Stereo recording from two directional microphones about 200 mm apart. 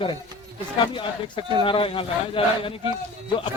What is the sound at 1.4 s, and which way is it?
A man's voice, 25° left (ahead or behind).